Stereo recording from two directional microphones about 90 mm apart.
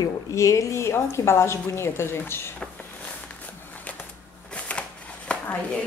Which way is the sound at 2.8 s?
15° left (ahead or behind).